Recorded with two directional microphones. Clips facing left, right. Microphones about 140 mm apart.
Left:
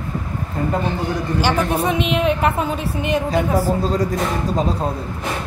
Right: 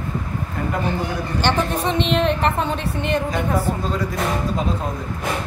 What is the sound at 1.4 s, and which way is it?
A woman's voice, 10° left (ahead or behind).